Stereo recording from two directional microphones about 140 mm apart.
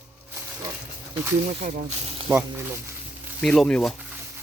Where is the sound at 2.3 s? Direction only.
15° right (ahead or behind).